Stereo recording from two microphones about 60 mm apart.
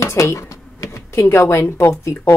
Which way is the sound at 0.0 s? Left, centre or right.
Left.